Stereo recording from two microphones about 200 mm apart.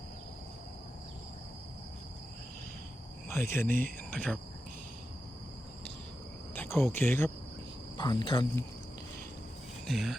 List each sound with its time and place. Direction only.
3.2 s speech: 15° left (ahead or behind)
6.5 s speech: 10° left (ahead or behind)
7.9 s speech: 20° left (ahead or behind)
9.8 s speech: centre (ahead or behind)